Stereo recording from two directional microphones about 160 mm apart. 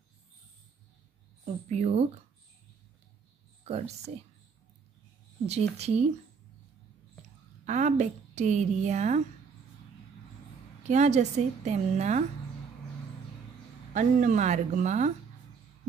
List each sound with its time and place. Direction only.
1.4 s a woman's voice: 45° right (ahead or behind)
3.6 s speech: 40° right (ahead or behind)
5.5 s a woman's voice: 40° right (ahead or behind)
7.6 s a woman's voice: 45° right (ahead or behind)
10.9 s a woman's voice: 45° right (ahead or behind)
13.9 s a woman's voice: 50° right (ahead or behind)